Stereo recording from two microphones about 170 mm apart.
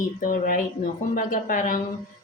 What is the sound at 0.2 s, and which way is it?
A woman's voice, 55° left (ahead or behind).